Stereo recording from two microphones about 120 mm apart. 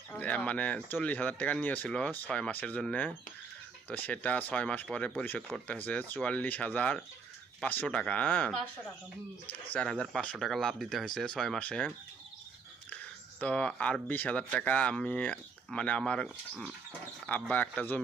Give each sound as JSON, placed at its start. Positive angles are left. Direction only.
{"t": 0.1, "sound": "speech", "side_deg": 10}
{"t": 9.9, "sound": "speech", "side_deg": 5}
{"t": 13.4, "sound": "speech", "side_deg": 10}